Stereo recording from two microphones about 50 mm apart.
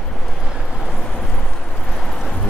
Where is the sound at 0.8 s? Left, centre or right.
Centre.